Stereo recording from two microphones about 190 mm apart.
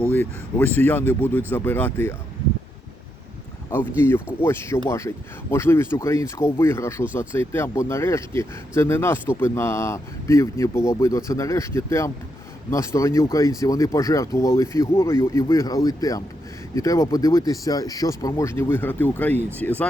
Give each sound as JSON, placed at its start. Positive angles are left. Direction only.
{"t": 0.0, "sound": "speech", "side_deg": 10}
{"t": 3.7, "sound": "speech", "side_deg": 10}